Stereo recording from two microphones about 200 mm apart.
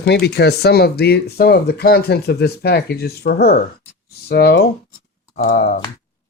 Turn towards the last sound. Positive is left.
turn(degrees=50)  # may be behind; listen again after turning